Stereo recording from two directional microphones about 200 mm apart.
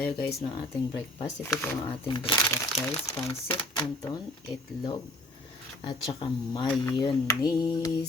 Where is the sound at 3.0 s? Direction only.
30° left (ahead or behind).